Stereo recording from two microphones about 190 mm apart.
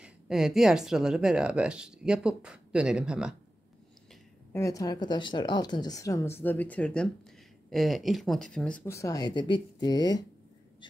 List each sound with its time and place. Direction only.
0.0 s speech: centre (ahead or behind)
4.5 s a woman's voice: 15° left (ahead or behind)